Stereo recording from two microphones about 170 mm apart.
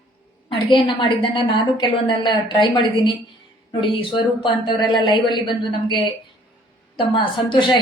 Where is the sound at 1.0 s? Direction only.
30° left (ahead or behind).